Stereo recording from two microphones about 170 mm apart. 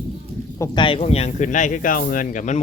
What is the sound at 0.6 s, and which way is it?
Speech, 25° left (ahead or behind).